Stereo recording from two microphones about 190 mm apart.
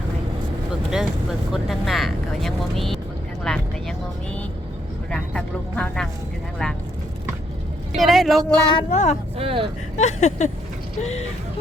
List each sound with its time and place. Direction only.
0.9 s speech: 5° right (ahead or behind)
3.4 s vehicle: 5° left (ahead or behind)
5.1 s speech: 5° left (ahead or behind)
7.9 s speech: centre (ahead or behind)
8.9 s a sound: 35° left (ahead or behind)
9.4 s speech: 30° right (ahead or behind)
10.0 s a sound: 35° left (ahead or behind)